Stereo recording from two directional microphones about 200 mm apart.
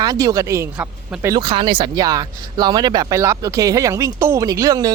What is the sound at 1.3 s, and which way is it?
Speech, 25° right (ahead or behind).